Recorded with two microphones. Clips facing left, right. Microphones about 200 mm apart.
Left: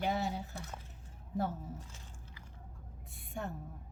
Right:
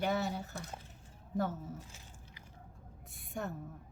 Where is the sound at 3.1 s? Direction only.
45° right (ahead or behind).